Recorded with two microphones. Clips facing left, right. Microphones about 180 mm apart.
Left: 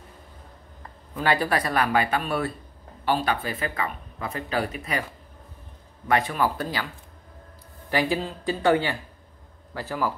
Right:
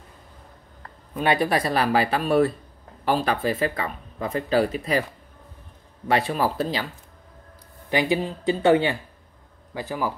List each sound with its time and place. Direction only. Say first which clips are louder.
1.1 s speech: right 2 dB; 20° right (ahead or behind)
6.0 s speech: right 1 dB; 30° right (ahead or behind)
7.9 s speech: right 2 dB; 20° right (ahead or behind)